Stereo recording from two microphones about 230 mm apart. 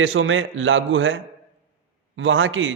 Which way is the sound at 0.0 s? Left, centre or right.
Right.